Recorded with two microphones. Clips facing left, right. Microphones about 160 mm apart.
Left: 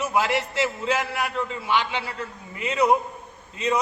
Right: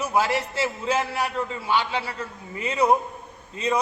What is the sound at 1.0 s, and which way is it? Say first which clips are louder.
A man's voice: right 1 dB; 30° right (ahead or behind).